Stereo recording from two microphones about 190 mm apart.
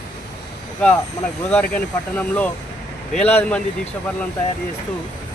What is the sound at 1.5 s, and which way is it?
Speech, 10° left (ahead or behind).